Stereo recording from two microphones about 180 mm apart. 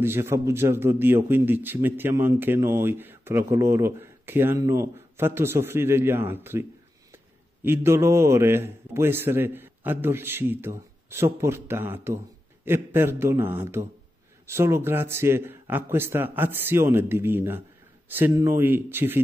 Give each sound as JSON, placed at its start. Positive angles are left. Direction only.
{"t": 0.0, "sound": "a man's voice", "side_deg": -15}